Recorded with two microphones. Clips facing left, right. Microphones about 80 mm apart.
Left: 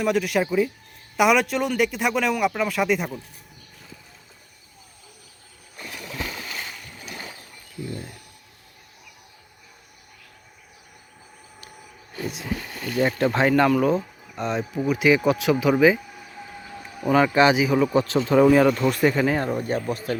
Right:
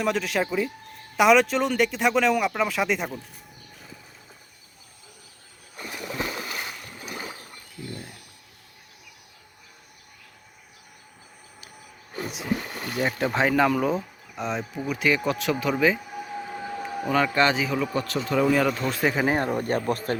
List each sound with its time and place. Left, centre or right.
0.0 s speech: centre
5.8 s splash: right
7.0 s a sound: centre
12.3 s speech: centre
12.5 s a sound: right
13.0 s speech: centre
16.5 s a sound: right
17.1 s speech: centre
18.1 s speech: left
19.2 s speech: centre
19.5 s speech: right